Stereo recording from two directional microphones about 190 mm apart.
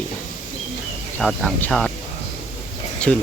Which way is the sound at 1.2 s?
Centre (ahead or behind).